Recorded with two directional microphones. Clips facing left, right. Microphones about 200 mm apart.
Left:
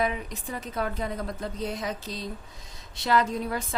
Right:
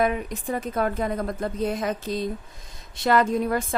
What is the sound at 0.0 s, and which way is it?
A woman's voice, 50° right (ahead or behind).